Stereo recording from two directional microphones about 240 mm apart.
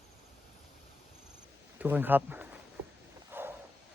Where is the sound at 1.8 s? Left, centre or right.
Centre.